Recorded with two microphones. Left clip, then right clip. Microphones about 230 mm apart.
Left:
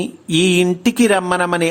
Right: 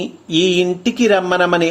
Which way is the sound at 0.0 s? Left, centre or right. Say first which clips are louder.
Right 1 dB; left.